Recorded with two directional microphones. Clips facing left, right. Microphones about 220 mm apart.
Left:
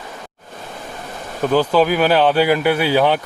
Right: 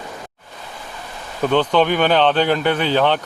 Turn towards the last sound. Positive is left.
turn(degrees=10)  # may be behind; listen again after turning